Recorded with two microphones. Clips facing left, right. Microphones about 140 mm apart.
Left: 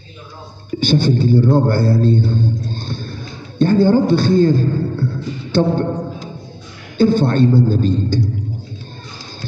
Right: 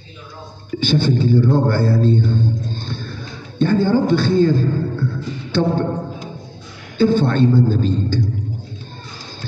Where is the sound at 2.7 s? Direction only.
45° left (ahead or behind).